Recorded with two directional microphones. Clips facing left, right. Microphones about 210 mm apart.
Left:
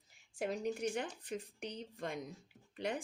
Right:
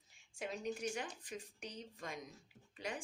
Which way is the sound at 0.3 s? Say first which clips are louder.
Left 5 dB; 55° left (ahead or behind).